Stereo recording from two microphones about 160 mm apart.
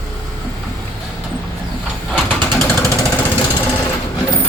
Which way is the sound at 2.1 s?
5° left (ahead or behind).